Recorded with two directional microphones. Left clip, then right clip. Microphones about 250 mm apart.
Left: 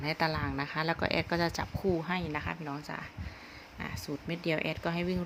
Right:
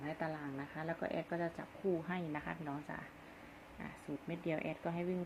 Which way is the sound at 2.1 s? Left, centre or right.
Left.